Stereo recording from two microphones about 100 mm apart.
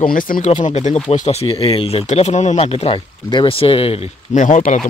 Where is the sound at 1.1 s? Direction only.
90° left.